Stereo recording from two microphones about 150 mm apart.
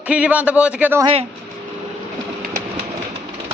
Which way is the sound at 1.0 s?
40° right (ahead or behind).